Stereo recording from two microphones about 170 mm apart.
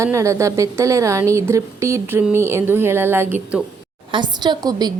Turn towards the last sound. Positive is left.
turn(degrees=-25)  # may be behind; listen again after turning